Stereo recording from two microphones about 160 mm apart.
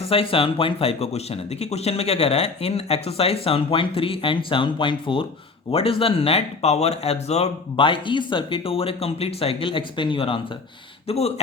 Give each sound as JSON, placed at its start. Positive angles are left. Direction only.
{"t": 0.1, "sound": "speech", "side_deg": 35}